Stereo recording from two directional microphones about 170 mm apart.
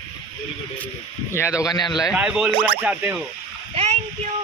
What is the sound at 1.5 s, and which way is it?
Speech, 20° left (ahead or behind).